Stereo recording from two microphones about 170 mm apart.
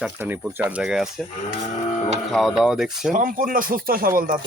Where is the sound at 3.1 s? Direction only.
55° right (ahead or behind).